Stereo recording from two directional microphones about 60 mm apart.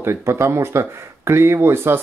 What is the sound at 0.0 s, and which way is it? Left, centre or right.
Speech, right.